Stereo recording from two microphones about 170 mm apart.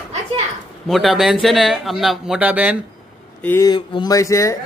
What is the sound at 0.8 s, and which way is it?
Speech, centre (ahead or behind).